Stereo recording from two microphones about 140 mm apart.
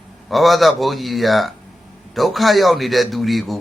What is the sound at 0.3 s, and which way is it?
A man's voice, centre (ahead or behind).